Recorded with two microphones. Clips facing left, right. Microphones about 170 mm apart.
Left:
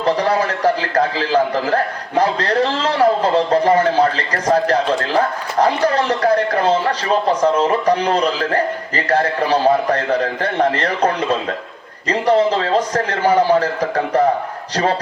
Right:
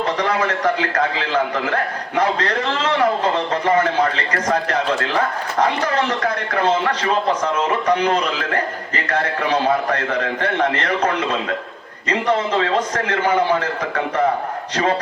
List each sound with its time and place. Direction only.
0.0 s a man's voice: 35° left (ahead or behind)